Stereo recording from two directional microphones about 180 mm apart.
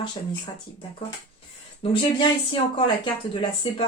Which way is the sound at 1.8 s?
30° left (ahead or behind).